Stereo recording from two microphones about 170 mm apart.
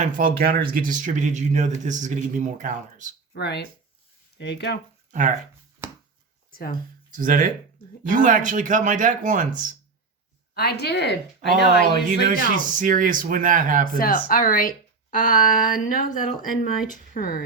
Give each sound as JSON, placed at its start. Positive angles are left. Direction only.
{"t": 0.2, "sound": "speech", "side_deg": -60}
{"t": 3.3, "sound": "speech", "side_deg": 75}
{"t": 5.1, "sound": "speech", "side_deg": -45}
{"t": 6.5, "sound": "a sound", "side_deg": 60}
{"t": 7.2, "sound": "speech", "side_deg": -50}
{"t": 10.5, "sound": "speech", "side_deg": 70}
{"t": 12.3, "sound": "speech", "side_deg": -50}
{"t": 14.0, "sound": "speech", "side_deg": 55}
{"t": 17.2, "sound": "speech", "side_deg": 35}